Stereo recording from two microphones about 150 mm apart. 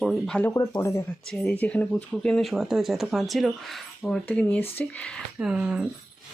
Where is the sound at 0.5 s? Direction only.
25° left (ahead or behind).